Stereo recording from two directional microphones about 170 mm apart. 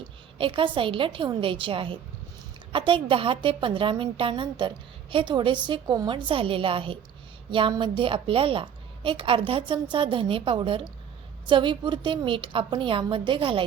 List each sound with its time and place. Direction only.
0.0 s a woman's voice: 30° right (ahead or behind)